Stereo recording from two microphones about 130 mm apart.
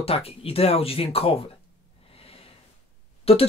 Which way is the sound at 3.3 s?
50° left (ahead or behind).